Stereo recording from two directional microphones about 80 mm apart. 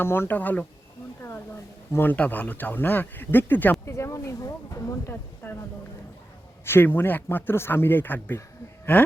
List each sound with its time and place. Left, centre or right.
0.0 s speech: left
1.9 s speech: left
3.8 s speech: left
5.4 s speech: left
6.7 s speech: left